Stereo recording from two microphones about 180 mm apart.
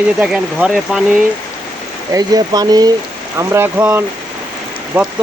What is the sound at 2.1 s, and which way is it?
Speech, 20° right (ahead or behind).